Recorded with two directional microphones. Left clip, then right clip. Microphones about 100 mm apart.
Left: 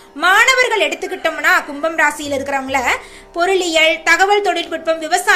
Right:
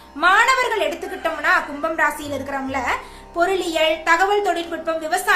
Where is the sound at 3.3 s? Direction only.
25° left (ahead or behind).